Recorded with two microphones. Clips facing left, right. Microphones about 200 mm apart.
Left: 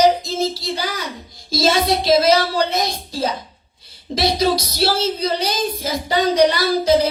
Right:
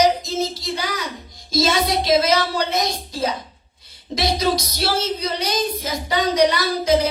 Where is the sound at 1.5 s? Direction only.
30° left (ahead or behind).